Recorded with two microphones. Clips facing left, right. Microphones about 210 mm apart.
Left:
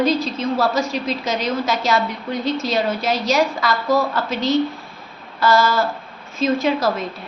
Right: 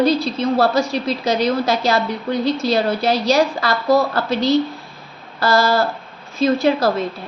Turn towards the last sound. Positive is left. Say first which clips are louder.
# right 3 dB
turn(degrees=-30)  # may be behind; listen again after turning